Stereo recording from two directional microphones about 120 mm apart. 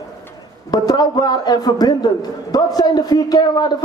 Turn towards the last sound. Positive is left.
turn(degrees=35)  # may be behind; listen again after turning